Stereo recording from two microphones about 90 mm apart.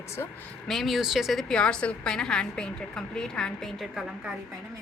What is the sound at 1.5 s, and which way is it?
A woman's voice, 10° left (ahead or behind).